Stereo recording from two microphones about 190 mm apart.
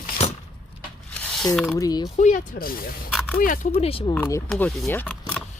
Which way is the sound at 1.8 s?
20° left (ahead or behind).